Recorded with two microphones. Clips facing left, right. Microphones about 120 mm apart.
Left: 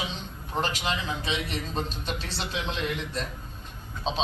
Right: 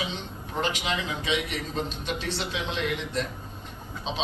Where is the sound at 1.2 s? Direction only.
35° left (ahead or behind).